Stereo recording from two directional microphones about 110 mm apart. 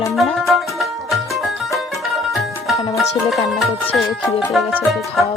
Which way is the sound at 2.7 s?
30° left (ahead or behind).